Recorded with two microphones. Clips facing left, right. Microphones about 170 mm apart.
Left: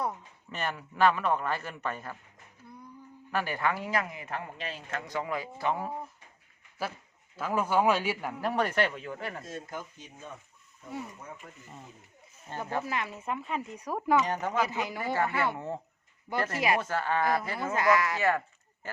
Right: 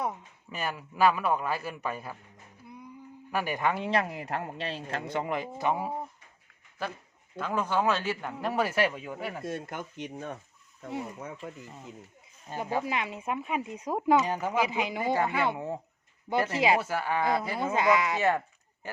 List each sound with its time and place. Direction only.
0.1 s speech: 10° right (ahead or behind)
3.3 s a man's voice: 15° right (ahead or behind)
6.8 s speech: 5° left (ahead or behind); by 9.4 s 10° right (ahead or behind)
9.4 s speech: 65° right (ahead or behind)
11.2 s speech: 85° right
12.5 s speech: 10° right (ahead or behind)
14.3 s a man's voice: 10° right (ahead or behind)
16.8 s speech: 10° right (ahead or behind)